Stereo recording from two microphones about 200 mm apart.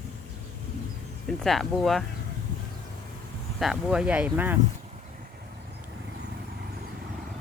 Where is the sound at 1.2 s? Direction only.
Centre (ahead or behind).